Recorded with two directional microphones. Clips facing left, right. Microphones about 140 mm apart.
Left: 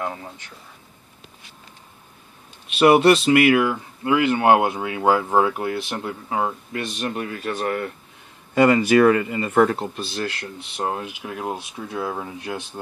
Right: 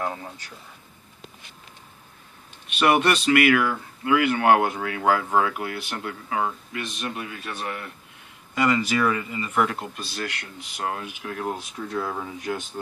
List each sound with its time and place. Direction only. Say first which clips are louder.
0.0 s speech: left 1 dB; centre (ahead or behind)
2.8 s speech: left 6 dB; 30° left (ahead or behind)
7.2 s speech: left 7 dB; 45° left (ahead or behind)
9.5 s speech: left 7 dB; 35° left (ahead or behind)
11.2 s speech: right 1 dB; 15° left (ahead or behind)